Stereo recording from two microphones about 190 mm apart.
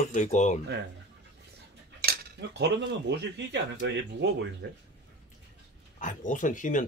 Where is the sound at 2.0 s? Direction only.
55° right (ahead or behind).